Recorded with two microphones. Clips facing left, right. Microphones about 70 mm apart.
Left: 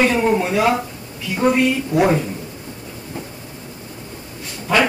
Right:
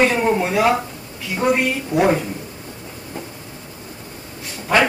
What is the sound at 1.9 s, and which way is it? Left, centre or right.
Speech, right.